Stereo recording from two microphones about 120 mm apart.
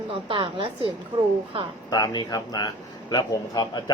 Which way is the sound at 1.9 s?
35° left (ahead or behind).